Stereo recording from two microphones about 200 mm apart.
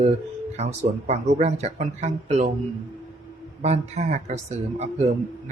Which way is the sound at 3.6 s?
30° right (ahead or behind).